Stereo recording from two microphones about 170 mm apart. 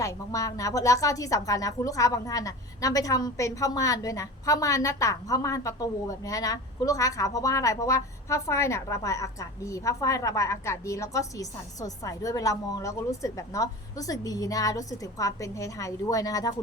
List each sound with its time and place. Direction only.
0.0 s a woman's voice: 20° left (ahead or behind)